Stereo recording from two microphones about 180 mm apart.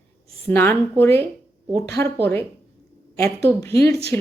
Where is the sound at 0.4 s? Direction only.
10° left (ahead or behind).